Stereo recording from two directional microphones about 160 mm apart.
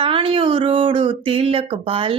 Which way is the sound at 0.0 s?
35° right (ahead or behind).